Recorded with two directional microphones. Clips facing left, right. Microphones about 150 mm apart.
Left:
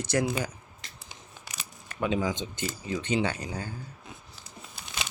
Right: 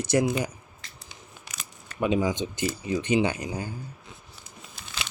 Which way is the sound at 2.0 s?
15° right (ahead or behind).